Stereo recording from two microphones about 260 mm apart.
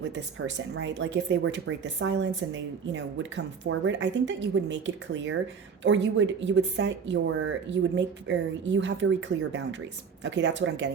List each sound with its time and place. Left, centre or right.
0.1 s speech: right